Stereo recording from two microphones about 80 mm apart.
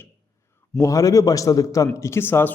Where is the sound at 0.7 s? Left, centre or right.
Left.